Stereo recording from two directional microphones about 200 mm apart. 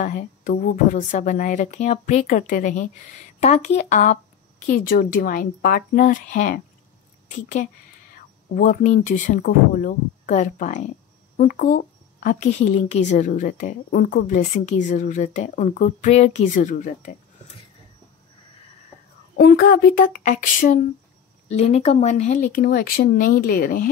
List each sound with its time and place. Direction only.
0.0 s a woman's voice: 40° left (ahead or behind)
19.3 s speech: 50° left (ahead or behind)